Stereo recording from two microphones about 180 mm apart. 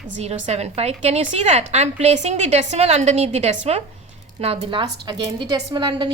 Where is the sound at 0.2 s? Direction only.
35° right (ahead or behind).